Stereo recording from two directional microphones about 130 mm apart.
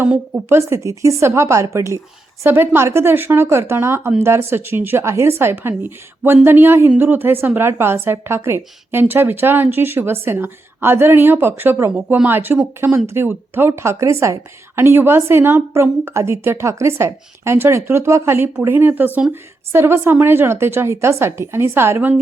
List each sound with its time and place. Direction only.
0.0 s a woman's voice: 15° right (ahead or behind)